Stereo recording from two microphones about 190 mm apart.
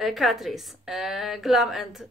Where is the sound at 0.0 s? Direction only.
Centre (ahead or behind).